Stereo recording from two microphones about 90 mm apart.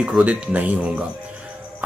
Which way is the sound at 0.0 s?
15° right (ahead or behind).